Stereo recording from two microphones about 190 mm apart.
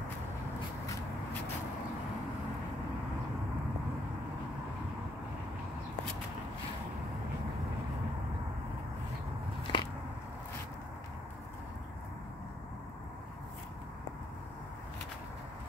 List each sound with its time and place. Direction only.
9.6 s biting: 25° left (ahead or behind)